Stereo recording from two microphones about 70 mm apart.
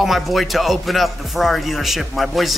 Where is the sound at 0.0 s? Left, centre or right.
Centre.